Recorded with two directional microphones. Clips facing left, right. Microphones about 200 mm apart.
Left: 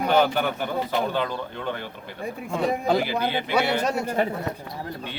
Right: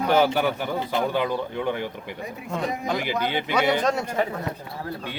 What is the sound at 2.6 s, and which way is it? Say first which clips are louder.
Speech: left 6 dB; 30° left (ahead or behind).